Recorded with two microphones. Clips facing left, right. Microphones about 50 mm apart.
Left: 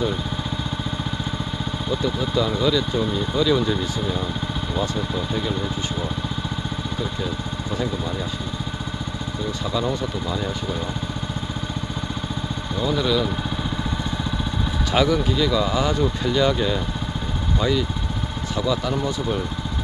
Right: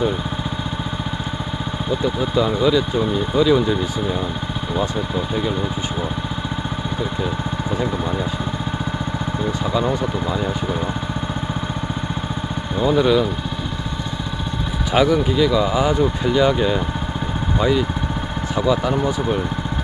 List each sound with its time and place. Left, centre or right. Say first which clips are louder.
2.0 s speech: right 4 dB; centre
5.3 s speech: right 4 dB; centre
9.7 s speech: right 3 dB; centre
12.8 s speech: right 6 dB; right
14.9 s speech: right 4 dB; centre